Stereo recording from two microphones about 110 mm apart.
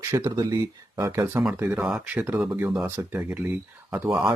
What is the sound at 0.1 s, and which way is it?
Speech, 30° right (ahead or behind).